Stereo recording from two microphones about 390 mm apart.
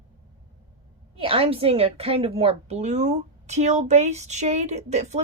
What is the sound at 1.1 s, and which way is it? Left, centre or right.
A woman's voice, centre.